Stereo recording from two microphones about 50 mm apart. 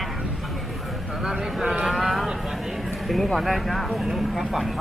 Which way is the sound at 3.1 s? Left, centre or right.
Centre.